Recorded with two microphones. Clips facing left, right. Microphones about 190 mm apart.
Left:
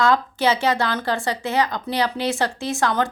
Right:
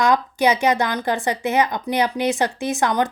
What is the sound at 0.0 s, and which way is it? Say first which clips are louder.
A woman's voice: right 1 dB; 15° right (ahead or behind).